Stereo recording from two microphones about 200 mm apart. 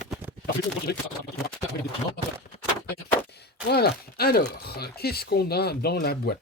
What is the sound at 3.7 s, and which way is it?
Speech, 55° left (ahead or behind).